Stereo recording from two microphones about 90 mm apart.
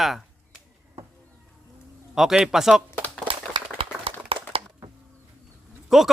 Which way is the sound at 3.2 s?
80° right.